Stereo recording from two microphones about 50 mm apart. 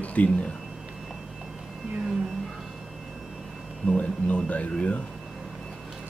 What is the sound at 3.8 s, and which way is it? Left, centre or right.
Speech, left.